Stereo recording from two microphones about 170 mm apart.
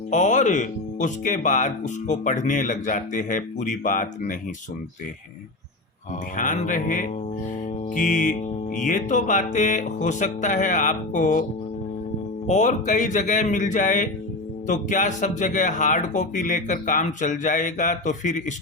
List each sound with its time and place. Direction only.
0.1 s speech: 45° left (ahead or behind)
6.3 s speech: 50° left (ahead or behind)
12.5 s speech: 45° left (ahead or behind)